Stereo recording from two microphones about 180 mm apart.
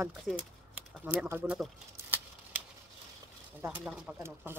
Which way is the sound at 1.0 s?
10° right (ahead or behind).